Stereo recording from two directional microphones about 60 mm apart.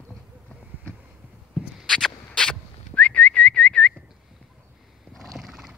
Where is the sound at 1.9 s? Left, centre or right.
Centre.